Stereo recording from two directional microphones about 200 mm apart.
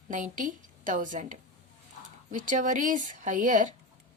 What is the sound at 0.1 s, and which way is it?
Speech, 40° right (ahead or behind).